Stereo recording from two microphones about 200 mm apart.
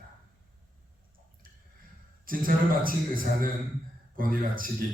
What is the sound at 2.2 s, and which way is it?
A man's voice, 45° right (ahead or behind).